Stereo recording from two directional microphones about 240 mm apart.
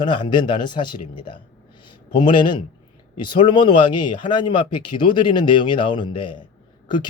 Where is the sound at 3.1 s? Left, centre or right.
Centre.